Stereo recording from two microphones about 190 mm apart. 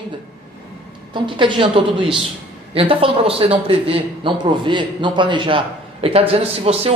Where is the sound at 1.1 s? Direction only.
25° right (ahead or behind).